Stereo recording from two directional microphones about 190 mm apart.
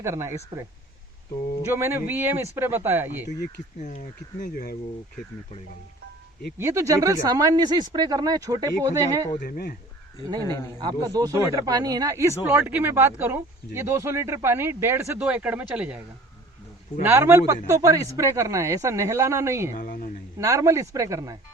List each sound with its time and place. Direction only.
0.0 s speech: 15° right (ahead or behind)
1.6 s speech: 15° right (ahead or behind)
3.8 s speech: 40° left (ahead or behind)
4.4 s speech: 50° left (ahead or behind)
6.6 s speech: 15° right (ahead or behind)
9.4 s speech: 50° left (ahead or behind)
11.0 s speech: 20° right (ahead or behind)
17.0 s speech: 10° right (ahead or behind)
19.7 s speech: 45° left (ahead or behind)
20.4 s speech: 15° right (ahead or behind)